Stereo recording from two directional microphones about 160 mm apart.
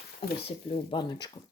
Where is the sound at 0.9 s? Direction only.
30° left (ahead or behind).